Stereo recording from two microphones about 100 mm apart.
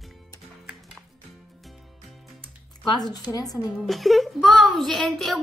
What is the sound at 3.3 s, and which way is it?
Speech, 35° left (ahead or behind).